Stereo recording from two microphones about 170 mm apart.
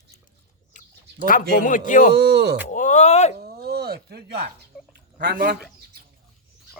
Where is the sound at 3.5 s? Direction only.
70° right (ahead or behind).